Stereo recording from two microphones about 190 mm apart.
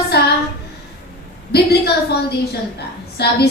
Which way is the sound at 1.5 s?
55° left (ahead or behind).